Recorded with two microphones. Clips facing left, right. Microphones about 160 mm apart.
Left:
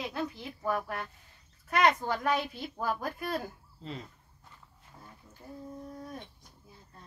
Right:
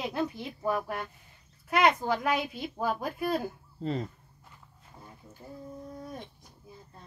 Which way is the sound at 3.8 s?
45° right (ahead or behind).